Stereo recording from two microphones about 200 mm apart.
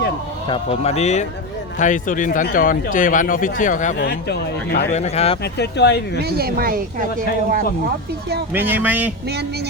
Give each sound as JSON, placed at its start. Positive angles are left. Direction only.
{"t": 0.4, "sound": "speech", "side_deg": 25}
{"t": 3.9, "sound": "speech", "side_deg": 55}
{"t": 4.9, "sound": "speech", "side_deg": 35}
{"t": 5.4, "sound": "speech", "side_deg": 55}
{"t": 6.2, "sound": "speech", "side_deg": -50}
{"t": 8.5, "sound": "speech", "side_deg": -10}